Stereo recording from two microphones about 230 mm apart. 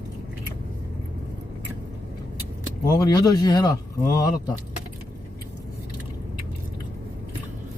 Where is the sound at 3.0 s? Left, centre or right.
Centre.